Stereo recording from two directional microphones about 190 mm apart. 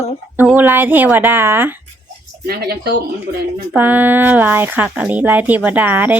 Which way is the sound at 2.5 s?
55° right (ahead or behind).